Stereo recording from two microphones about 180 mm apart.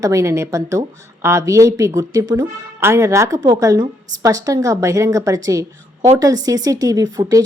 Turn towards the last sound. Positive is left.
turn(degrees=-20)  # may be behind; listen again after turning